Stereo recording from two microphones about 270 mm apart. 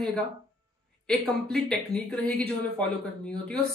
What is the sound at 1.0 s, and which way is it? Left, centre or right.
Speech, centre.